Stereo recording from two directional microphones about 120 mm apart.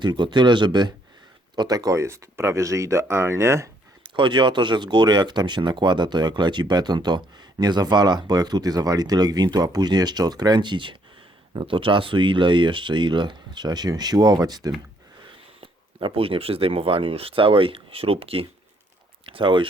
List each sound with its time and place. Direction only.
0.0 s speech: 40° right (ahead or behind); by 3.7 s 20° right (ahead or behind)
4.0 s speech: 40° right (ahead or behind)
15.6 s speech: 45° right (ahead or behind)